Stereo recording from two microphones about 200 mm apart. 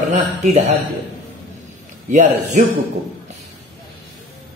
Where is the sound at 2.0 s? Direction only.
35° right (ahead or behind).